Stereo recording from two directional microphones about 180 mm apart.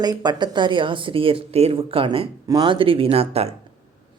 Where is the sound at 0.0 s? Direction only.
20° right (ahead or behind).